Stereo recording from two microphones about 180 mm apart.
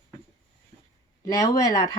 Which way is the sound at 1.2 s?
20° left (ahead or behind).